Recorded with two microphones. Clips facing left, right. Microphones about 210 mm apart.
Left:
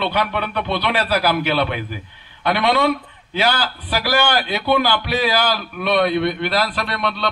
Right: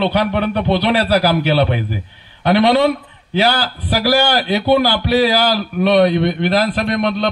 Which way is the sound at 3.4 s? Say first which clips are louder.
Right 3 dB; 40° right (ahead or behind).